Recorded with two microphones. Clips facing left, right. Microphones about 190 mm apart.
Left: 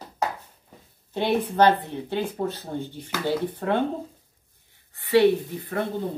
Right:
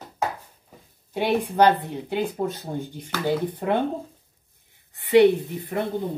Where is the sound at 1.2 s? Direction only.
10° right (ahead or behind).